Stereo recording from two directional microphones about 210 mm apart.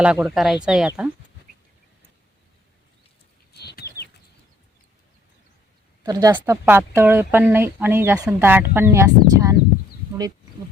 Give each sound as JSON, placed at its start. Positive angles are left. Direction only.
{"t": 0.0, "sound": "speech", "side_deg": -5}
{"t": 3.5, "sound": "bird", "side_deg": 50}
{"t": 6.0, "sound": "a woman's voice", "side_deg": -15}